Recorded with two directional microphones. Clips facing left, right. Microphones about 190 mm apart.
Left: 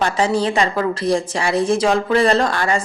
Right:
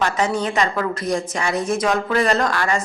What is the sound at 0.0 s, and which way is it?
Speech, 30° left (ahead or behind).